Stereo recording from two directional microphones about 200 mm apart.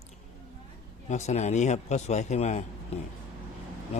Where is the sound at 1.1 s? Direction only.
35° left (ahead or behind).